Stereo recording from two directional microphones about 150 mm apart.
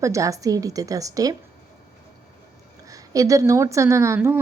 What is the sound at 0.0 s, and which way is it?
A woman's voice, 20° right (ahead or behind).